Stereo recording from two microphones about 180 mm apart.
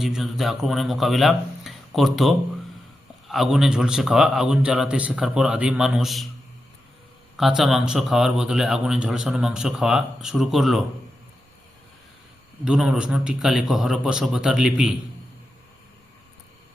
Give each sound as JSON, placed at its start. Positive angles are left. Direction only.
{"t": 0.0, "sound": "a man's voice", "side_deg": 0}
{"t": 7.3, "sound": "a man's voice", "side_deg": 0}
{"t": 12.6, "sound": "a man's voice", "side_deg": -5}